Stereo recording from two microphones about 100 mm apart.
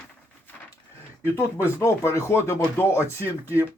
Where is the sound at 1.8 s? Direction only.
30° left (ahead or behind).